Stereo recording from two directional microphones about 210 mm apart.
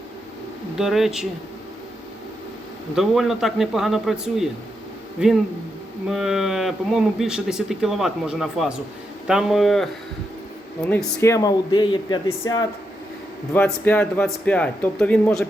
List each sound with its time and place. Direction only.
0.8 s speech: centre (ahead or behind)
2.9 s speech: centre (ahead or behind); by 12.6 s 20° left (ahead or behind)
13.5 s speech: 10° left (ahead or behind)